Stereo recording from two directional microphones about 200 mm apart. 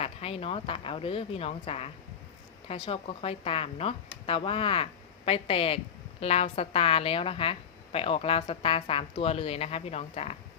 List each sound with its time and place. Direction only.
0.0 s speech: 30° left (ahead or behind)